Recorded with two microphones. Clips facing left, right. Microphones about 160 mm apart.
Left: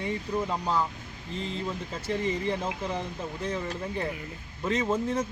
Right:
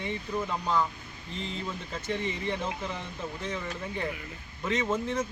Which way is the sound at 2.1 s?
35° left (ahead or behind).